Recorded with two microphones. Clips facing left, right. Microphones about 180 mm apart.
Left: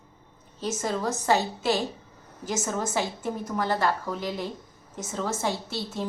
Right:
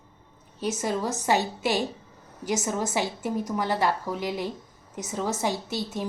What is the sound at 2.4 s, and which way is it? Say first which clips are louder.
A woman's voice: right 2 dB; 15° right (ahead or behind).